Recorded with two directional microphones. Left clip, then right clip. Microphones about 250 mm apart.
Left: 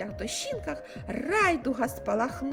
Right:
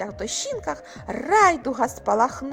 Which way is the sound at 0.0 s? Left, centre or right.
Centre.